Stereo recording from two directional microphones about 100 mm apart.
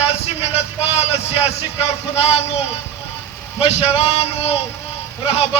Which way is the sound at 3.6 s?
85° left.